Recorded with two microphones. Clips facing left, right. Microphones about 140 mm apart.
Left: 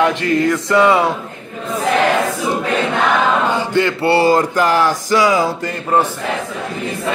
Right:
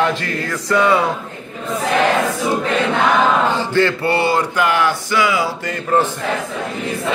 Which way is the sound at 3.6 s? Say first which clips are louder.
Even; 15° left (ahead or behind).